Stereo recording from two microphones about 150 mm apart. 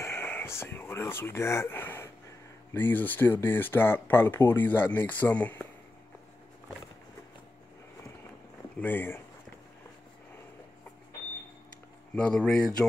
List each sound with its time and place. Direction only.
0.0 s speech: 15° left (ahead or behind)
8.7 s speech: 10° left (ahead or behind)
12.2 s speech: 5° left (ahead or behind)